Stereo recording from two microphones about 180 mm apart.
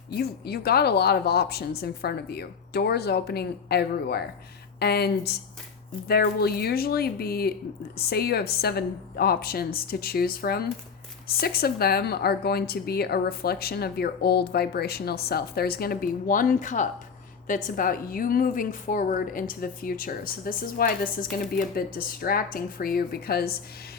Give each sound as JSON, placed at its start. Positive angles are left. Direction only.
{"t": 0.1, "sound": "a woman's voice", "side_deg": 60}